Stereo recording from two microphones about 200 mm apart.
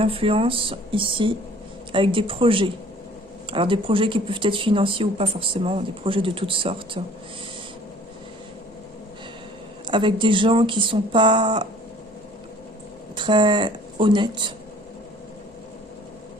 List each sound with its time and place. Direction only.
0.0 s speech: 25° right (ahead or behind)
9.8 s speech: 25° right (ahead or behind)
13.1 s speech: 25° right (ahead or behind)